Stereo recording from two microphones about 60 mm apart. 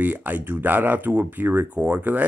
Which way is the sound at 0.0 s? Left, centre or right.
Right.